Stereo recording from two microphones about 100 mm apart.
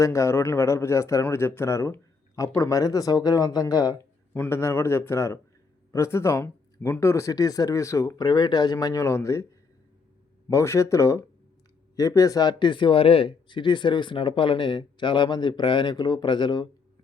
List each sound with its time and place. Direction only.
0.0 s a man's voice: 30° left (ahead or behind)
4.4 s a man's voice: 25° left (ahead or behind)
10.5 s speech: 30° left (ahead or behind); by 16.6 s 50° left (ahead or behind)